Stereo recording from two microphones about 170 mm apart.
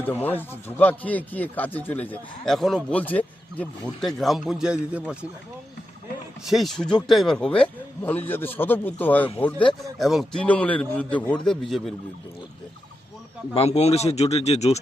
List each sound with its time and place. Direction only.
0.0 s a man's voice: 10° left (ahead or behind); by 5.1 s 10° right (ahead or behind)
6.5 s a man's voice: centre (ahead or behind)
10.0 s a man's voice: centre (ahead or behind)
13.5 s speech: 35° left (ahead or behind)